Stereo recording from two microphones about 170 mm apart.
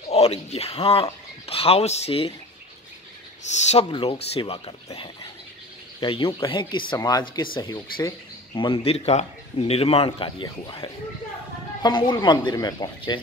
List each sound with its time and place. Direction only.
0.1 s speech: 35° left (ahead or behind)
3.4 s speech: 45° left (ahead or behind)
3.9 s speech: 35° left (ahead or behind)
5.9 s speech: 30° left (ahead or behind)